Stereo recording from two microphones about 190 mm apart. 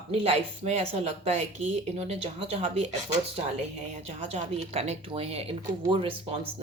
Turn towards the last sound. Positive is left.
turn(degrees=-30)  # may be behind; listen again after turning